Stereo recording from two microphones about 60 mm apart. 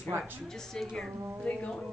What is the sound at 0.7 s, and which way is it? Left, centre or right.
Speech, centre.